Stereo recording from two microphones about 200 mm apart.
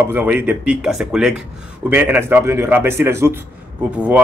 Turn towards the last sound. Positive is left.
turn(degrees=-10)  # may be behind; listen again after turning